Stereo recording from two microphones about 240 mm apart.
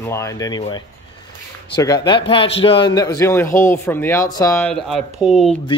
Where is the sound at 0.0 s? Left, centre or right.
Centre.